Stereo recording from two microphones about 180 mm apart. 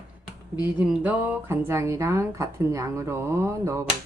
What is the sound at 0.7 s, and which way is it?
Speech, 10° right (ahead or behind).